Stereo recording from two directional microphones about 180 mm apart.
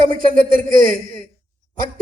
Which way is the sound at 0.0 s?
50° right (ahead or behind).